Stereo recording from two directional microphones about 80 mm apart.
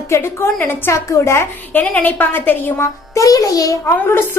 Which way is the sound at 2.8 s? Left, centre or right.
Left.